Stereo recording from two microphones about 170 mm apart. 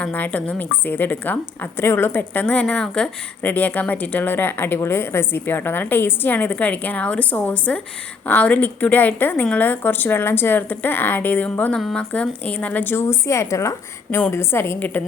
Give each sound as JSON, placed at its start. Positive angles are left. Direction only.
{"t": 0.0, "sound": "a woman's voice", "side_deg": 10}